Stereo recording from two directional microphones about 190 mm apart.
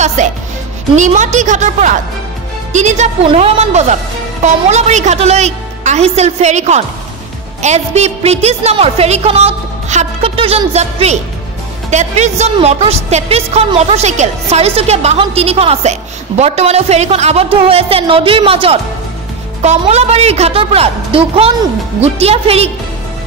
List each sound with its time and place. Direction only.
0.0 s a woman's voice: 40° right (ahead or behind)